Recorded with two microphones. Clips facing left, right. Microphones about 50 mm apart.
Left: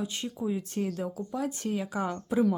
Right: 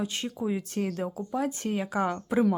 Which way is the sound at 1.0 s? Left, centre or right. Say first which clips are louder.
Right 3 dB; right.